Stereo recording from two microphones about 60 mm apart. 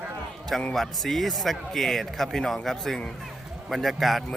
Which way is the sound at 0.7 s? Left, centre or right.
Centre.